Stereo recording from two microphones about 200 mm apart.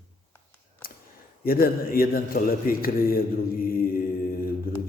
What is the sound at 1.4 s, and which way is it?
A man's voice, 45° left (ahead or behind).